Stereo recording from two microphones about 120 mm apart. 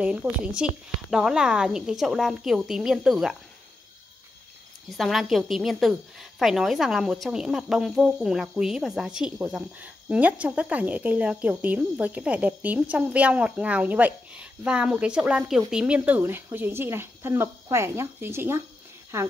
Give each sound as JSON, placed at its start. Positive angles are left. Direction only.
{"t": 0.0, "sound": "a woman's voice", "side_deg": -10}
{"t": 4.8, "sound": "a woman's voice", "side_deg": 0}